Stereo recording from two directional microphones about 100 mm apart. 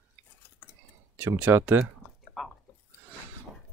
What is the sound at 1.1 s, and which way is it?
Speech, 20° right (ahead or behind).